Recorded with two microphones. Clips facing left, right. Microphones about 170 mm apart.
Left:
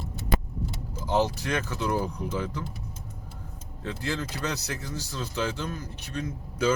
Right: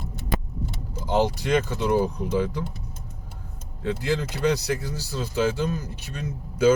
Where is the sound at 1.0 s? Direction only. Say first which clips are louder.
Right 3 dB; 15° right (ahead or behind).